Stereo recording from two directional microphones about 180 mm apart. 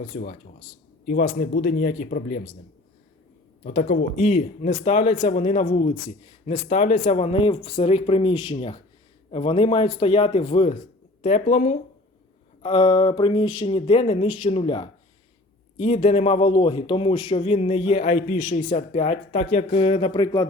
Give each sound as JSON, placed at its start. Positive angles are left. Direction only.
{"t": 0.1, "sound": "speech", "side_deg": 45}
{"t": 3.6, "sound": "a man's voice", "side_deg": 50}
{"t": 12.6, "sound": "a sound", "side_deg": 30}
{"t": 13.7, "sound": "a man's voice", "side_deg": 35}